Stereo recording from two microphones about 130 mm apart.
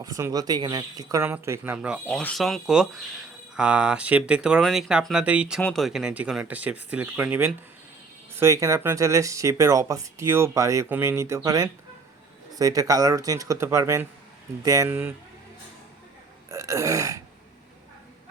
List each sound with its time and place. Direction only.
0.0 s speech: 25° right (ahead or behind)
1.2 s speech: 20° right (ahead or behind)
2.0 s speech: 15° left (ahead or behind)
2.3 s speech: centre (ahead or behind)
5.5 s speech: 5° left (ahead or behind); by 14.8 s 25° right (ahead or behind)
14.8 s speech: 15° right (ahead or behind)
16.5 s burping: 25° right (ahead or behind)